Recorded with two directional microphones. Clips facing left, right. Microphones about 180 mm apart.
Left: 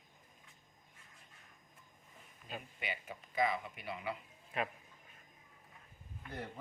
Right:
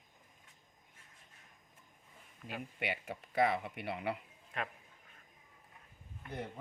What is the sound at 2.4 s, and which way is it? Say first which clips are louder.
Speech: right 4 dB; 70° right (ahead or behind).